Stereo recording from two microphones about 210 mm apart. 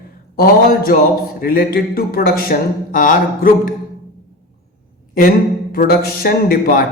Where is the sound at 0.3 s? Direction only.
45° left (ahead or behind).